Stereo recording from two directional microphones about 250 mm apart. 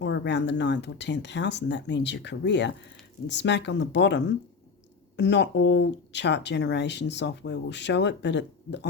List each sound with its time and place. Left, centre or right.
0.0 s speech: left